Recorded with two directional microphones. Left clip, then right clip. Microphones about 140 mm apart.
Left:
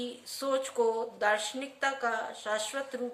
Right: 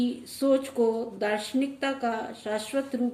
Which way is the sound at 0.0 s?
20° left (ahead or behind).